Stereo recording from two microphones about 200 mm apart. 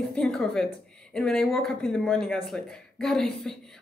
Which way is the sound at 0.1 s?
Centre (ahead or behind).